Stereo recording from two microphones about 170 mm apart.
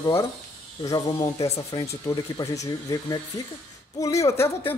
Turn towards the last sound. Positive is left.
turn(degrees=15)  # may be behind; listen again after turning